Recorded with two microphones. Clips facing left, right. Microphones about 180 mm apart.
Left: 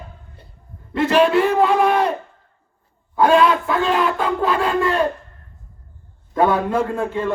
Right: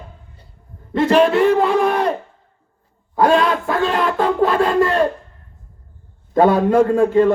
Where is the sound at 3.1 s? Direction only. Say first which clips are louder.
Even; 40° right (ahead or behind).